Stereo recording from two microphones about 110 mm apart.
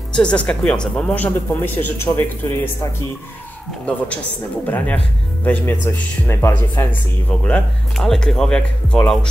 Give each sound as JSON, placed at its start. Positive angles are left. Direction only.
{"t": 0.1, "sound": "speech", "side_deg": 10}
{"t": 4.6, "sound": "speech", "side_deg": 15}